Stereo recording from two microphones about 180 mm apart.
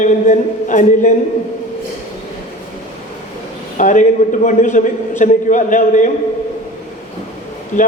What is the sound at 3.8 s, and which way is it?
A man's voice, 45° left (ahead or behind).